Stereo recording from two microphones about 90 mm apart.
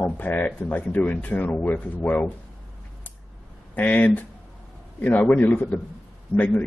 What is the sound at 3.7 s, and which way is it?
Speech, 20° left (ahead or behind).